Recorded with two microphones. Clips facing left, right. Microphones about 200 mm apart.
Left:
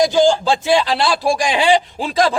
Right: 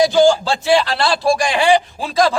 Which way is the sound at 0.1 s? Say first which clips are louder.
Right 1 dB; 15° left (ahead or behind).